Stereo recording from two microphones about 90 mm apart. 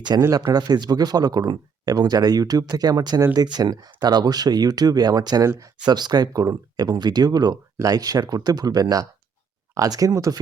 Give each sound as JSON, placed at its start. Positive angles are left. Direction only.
{"t": 0.1, "sound": "speech", "side_deg": -40}